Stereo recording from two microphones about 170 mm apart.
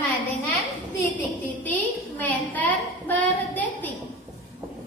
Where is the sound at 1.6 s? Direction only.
10° left (ahead or behind).